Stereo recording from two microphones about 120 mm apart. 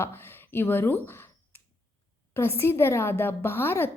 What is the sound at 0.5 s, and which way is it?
Speech, 15° left (ahead or behind).